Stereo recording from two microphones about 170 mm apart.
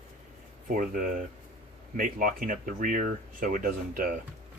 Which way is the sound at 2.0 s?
55° right (ahead or behind).